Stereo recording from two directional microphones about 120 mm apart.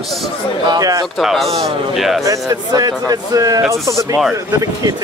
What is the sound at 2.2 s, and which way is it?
A man's voice, 30° right (ahead or behind).